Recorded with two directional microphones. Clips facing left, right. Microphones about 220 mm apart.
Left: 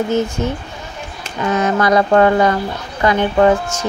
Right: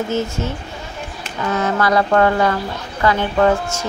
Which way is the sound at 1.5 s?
20° left (ahead or behind).